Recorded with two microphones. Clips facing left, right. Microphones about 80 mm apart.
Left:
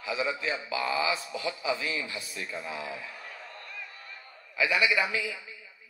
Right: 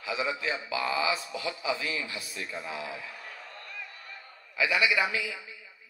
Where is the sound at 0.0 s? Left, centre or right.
Left.